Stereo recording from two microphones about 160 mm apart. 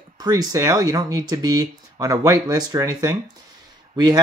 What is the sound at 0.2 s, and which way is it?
Speech, 25° right (ahead or behind).